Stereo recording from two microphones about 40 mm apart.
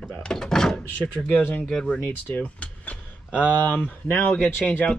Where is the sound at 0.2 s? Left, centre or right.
Centre.